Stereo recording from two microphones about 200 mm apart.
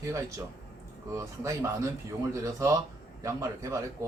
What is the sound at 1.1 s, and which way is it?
Speech, 15° right (ahead or behind).